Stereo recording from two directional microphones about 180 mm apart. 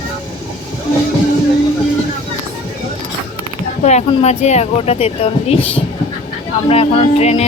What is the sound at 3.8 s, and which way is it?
Speech, 40° left (ahead or behind).